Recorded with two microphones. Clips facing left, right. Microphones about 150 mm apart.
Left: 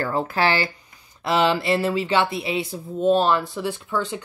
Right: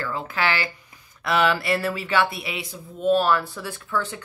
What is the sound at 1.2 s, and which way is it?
Speech, 25° left (ahead or behind).